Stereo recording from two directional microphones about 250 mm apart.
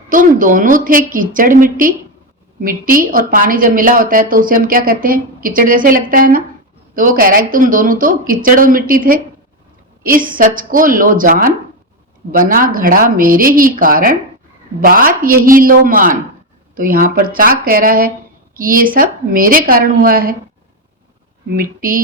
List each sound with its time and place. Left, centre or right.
0.1 s a woman's voice: right
21.5 s a woman's voice: right